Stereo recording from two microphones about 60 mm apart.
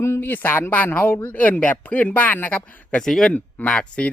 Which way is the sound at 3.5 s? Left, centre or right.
Centre.